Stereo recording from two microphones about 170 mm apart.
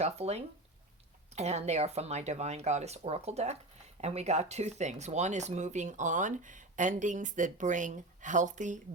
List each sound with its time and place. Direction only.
0.0 s speech: 40° right (ahead or behind)